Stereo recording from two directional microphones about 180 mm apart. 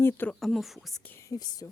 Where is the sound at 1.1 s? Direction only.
20° left (ahead or behind).